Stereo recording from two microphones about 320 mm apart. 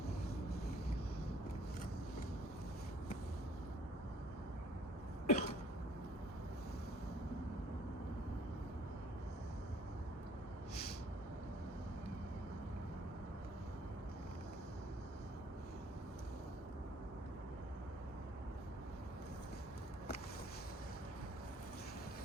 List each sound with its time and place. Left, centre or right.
5.2 s cough: left